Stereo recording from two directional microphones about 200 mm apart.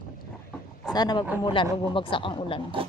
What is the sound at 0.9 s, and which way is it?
Speech, 20° left (ahead or behind).